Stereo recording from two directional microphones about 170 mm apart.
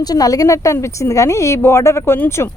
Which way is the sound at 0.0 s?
20° left (ahead or behind).